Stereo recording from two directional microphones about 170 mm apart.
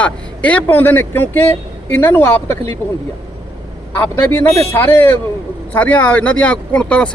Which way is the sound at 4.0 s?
15° left (ahead or behind).